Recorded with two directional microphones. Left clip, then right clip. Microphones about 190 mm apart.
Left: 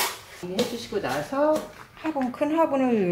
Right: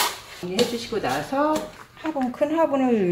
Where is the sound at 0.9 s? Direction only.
15° right (ahead or behind).